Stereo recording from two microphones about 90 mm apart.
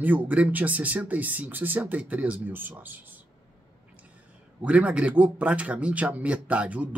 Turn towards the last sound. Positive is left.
turn(degrees=-15)  # may be behind; listen again after turning